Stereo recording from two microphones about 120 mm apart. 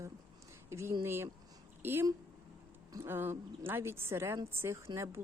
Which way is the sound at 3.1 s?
20° right (ahead or behind).